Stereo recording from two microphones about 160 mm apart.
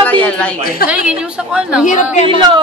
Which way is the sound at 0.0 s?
10° left (ahead or behind).